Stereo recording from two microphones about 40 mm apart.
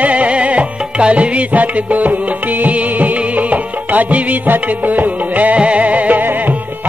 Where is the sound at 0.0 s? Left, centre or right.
Right.